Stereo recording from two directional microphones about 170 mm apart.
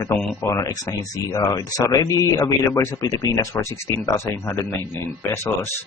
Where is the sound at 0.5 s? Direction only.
20° left (ahead or behind).